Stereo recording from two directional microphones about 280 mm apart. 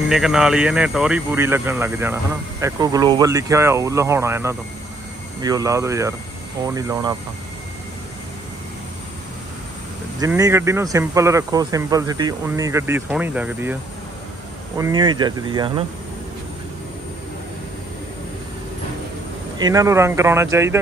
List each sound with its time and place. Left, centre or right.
0.1 s speech: centre
10.2 s speech: centre
14.8 s speech: centre
19.6 s speech: centre